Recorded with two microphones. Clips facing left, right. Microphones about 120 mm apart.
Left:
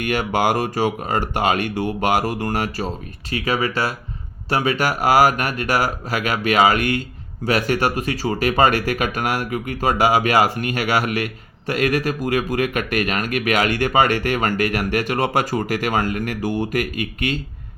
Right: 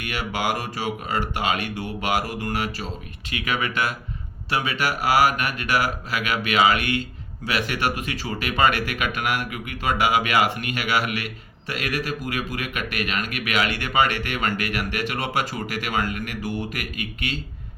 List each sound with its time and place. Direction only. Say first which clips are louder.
0.0 s speech: left 7 dB; 45° left (ahead or behind)